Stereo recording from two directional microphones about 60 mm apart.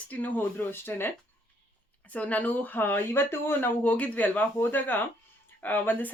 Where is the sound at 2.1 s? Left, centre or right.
Left.